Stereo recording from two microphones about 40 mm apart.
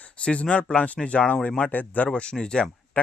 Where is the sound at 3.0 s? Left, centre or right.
Left.